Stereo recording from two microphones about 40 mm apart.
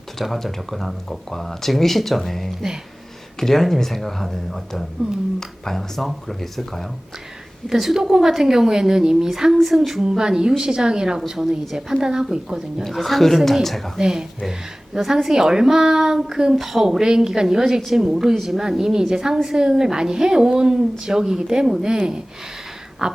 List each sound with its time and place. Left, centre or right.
0.2 s speech: centre
7.7 s a woman's voice: centre
12.8 s speech: centre
14.0 s a woman's voice: centre
18.0 s a woman's voice: right
18.3 s a woman's voice: centre